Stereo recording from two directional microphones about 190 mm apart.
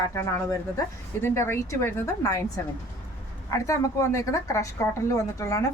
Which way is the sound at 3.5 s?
15° left (ahead or behind).